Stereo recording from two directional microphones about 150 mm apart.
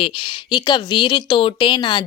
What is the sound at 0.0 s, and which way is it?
Speech, 35° left (ahead or behind).